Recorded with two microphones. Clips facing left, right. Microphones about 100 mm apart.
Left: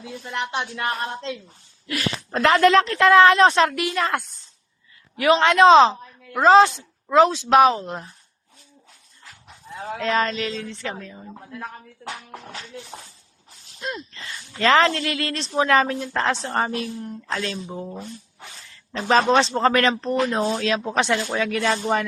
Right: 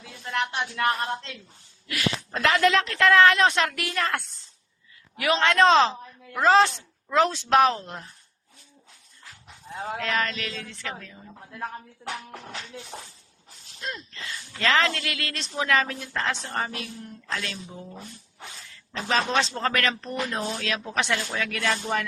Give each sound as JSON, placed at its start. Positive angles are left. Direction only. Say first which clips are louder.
{"t": 0.0, "sound": "speech", "louder": "even", "side_deg": 15}
{"t": 1.9, "sound": "a woman's voice", "louder": "left 2 dB", "side_deg": 35}
{"t": 2.8, "sound": "a woman's voice", "louder": "left 4 dB", "side_deg": 30}
{"t": 3.8, "sound": "speech", "louder": "left 5 dB", "side_deg": 20}
{"t": 5.1, "sound": "a man's voice", "louder": "left 7 dB", "side_deg": 35}
{"t": 5.4, "sound": "speech", "louder": "left 5 dB", "side_deg": 20}
{"t": 10.0, "sound": "speech", "louder": "left 7 dB", "side_deg": 25}
{"t": 13.8, "sound": "speech", "louder": "left 4 dB", "side_deg": 20}
{"t": 14.2, "sound": "a woman's voice", "louder": "left 6 dB", "side_deg": 35}
{"t": 17.2, "sound": "speech", "louder": "left 4 dB", "side_deg": 45}
{"t": 18.9, "sound": "speech", "louder": "left 7 dB", "side_deg": 40}